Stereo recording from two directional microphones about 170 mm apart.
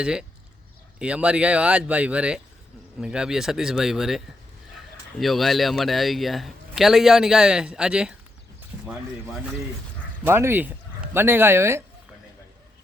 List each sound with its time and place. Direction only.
0.0 s a man's voice: 5° right (ahead or behind)
5.2 s a man's voice: centre (ahead or behind)
10.2 s speech: 15° right (ahead or behind)